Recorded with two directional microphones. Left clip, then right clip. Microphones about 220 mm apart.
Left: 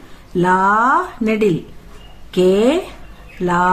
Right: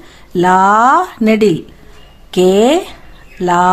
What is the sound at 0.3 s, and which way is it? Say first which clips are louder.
Speech: right 5 dB; 45° right (ahead or behind).